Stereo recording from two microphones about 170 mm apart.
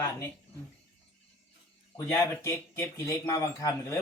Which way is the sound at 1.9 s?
20° left (ahead or behind).